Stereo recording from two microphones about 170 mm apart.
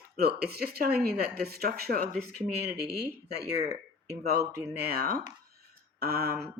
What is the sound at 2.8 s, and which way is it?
Speech, 75° right (ahead or behind).